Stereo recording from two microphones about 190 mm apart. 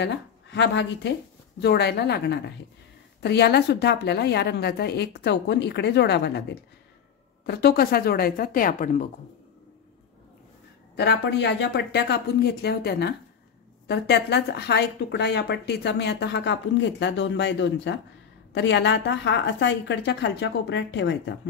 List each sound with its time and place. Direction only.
0.0 s speech: 65° left (ahead or behind); by 9.0 s 45° left (ahead or behind)
11.0 s a woman's voice: 65° left (ahead or behind)